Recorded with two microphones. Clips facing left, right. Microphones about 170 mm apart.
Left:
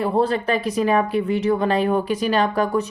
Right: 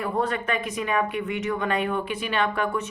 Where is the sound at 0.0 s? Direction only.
30° left (ahead or behind).